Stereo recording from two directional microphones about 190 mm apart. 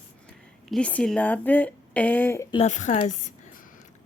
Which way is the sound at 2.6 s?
40° left (ahead or behind).